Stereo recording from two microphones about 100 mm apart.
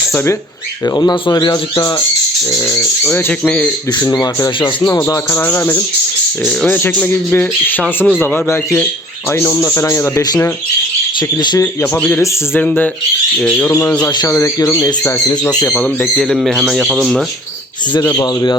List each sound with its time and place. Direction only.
0.9 s speech: 35° left (ahead or behind)
2.6 s speech: 25° left (ahead or behind)
3.9 s speech: 40° left (ahead or behind); by 9.6 s 20° left (ahead or behind)
9.6 s speech: 30° left (ahead or behind)
11.2 s speech: 45° left (ahead or behind)
11.9 s speech: 15° left (ahead or behind)
14.1 s speech: 45° left (ahead or behind)
14.3 s speech: 30° left (ahead or behind)
15.4 s speech: 10° left (ahead or behind)
16.2 s a man's voice: centre (ahead or behind)
18.0 s speech: 30° left (ahead or behind)